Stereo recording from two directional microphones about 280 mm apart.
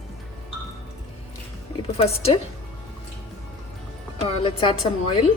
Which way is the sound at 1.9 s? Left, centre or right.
Left.